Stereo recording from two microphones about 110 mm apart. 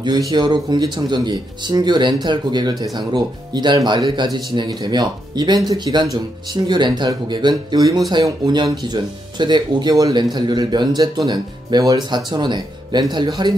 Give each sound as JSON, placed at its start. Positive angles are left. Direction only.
{"t": 0.3, "sound": "speech", "side_deg": -40}
{"t": 9.9, "sound": "speech", "side_deg": -30}